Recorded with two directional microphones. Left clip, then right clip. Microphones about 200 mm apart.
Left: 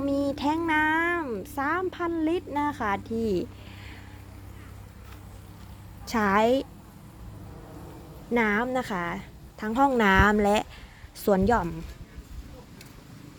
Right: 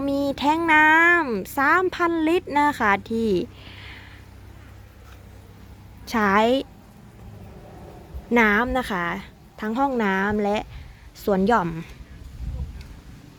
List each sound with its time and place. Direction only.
0.0 s a sound: 15° right (ahead or behind)
6.1 s a woman's voice: 5° right (ahead or behind)
8.3 s a woman's voice: 15° right (ahead or behind)